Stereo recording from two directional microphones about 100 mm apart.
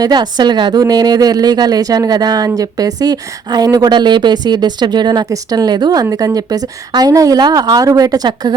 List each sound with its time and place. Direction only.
0.0 s a woman's voice: 45° right (ahead or behind)